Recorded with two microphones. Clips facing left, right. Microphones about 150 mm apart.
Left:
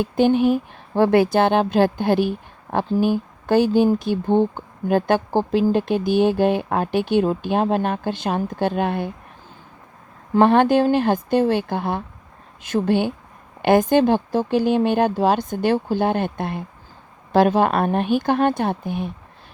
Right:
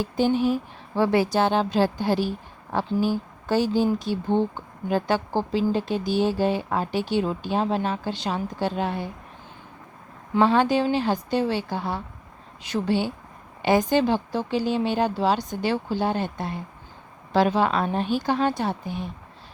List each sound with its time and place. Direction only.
0.0 s speech: 60° left (ahead or behind)
10.3 s speech: 55° left (ahead or behind)